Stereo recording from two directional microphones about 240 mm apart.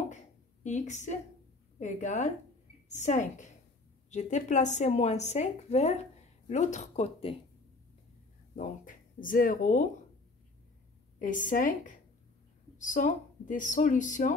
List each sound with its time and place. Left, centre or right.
0.7 s speech: left
8.5 s speech: left
11.1 s speech: left